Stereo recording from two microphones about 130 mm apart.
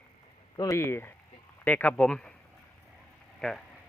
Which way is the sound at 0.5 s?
30° left (ahead or behind).